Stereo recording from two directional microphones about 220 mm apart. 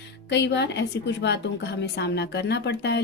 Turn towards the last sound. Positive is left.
turn(degrees=50)  # may be behind; listen again after turning